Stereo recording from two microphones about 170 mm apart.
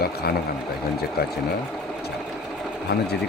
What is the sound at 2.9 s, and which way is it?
Speech, 70° left (ahead or behind).